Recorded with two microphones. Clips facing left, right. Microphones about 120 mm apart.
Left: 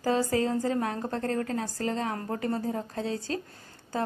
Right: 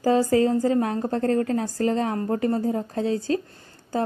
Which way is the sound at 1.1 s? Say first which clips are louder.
Right 10 dB; 40° right (ahead or behind).